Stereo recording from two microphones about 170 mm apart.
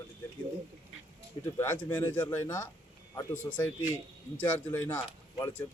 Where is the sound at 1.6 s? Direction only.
10° left (ahead or behind).